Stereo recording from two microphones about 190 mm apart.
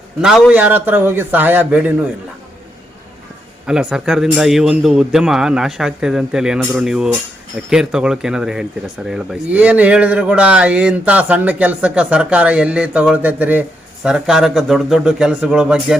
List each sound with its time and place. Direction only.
0.2 s a man's voice: centre (ahead or behind)
3.7 s speech: 5° right (ahead or behind)